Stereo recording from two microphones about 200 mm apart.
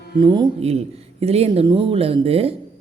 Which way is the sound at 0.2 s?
20° right (ahead or behind).